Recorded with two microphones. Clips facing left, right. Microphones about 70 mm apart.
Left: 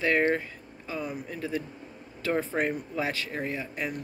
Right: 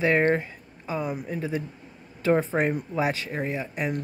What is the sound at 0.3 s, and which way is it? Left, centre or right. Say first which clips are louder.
Speech: right 4 dB; right.